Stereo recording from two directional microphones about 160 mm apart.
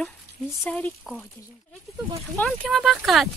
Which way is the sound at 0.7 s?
10° left (ahead or behind).